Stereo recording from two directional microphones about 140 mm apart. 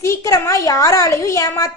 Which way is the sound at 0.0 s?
25° left (ahead or behind).